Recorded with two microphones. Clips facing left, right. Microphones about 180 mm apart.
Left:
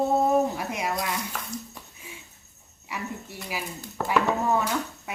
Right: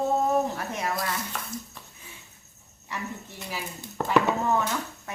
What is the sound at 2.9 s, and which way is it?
Speech, 10° left (ahead or behind).